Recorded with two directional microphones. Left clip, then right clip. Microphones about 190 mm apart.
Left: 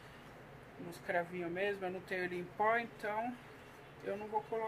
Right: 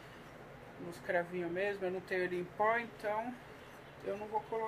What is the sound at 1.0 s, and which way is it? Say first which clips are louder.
Speech: right 2 dB; 20° left (ahead or behind).